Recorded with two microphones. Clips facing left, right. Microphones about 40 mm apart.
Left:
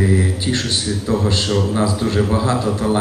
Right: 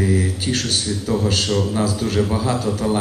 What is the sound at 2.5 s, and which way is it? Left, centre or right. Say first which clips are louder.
Speech: left 2 dB; left.